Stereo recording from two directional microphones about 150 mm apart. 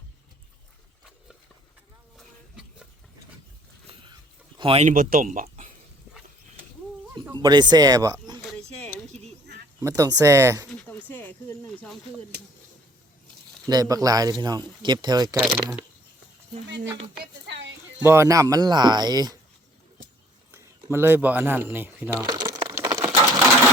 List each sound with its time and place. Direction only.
2.1 s a sound: 5° right (ahead or behind)
4.1 s a sound: 35° right (ahead or behind)
4.9 s speech: 70° right (ahead or behind)
7.3 s speech: 30° right (ahead or behind)
8.4 s oink: centre (ahead or behind)
8.8 s a sound: 10° left (ahead or behind)
9.8 s speech: 25° right (ahead or behind)
10.8 s snake: 10° left (ahead or behind)
13.7 s speech: 25° right (ahead or behind)
15.4 s speech: 10° right (ahead or behind)
18.0 s speech: 15° right (ahead or behind)
20.5 s speech: 15° right (ahead or behind)
22.2 s speech: 30° right (ahead or behind)
22.4 s a sound: 15° right (ahead or behind)